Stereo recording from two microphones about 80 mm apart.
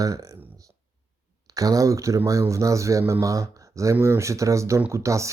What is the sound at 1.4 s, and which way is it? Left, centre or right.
Speech, right.